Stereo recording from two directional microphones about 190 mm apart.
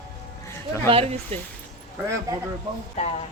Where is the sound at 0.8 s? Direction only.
30° right (ahead or behind).